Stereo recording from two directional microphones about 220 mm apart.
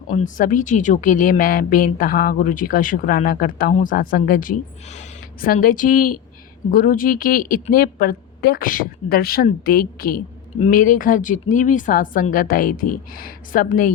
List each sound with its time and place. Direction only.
0.1 s a woman's voice: 35° left (ahead or behind)